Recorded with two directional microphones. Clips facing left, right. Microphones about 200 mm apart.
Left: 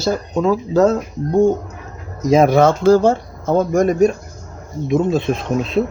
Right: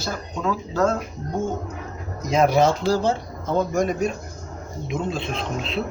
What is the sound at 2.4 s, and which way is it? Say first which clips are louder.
Speech: left 4 dB; 50° left (ahead or behind).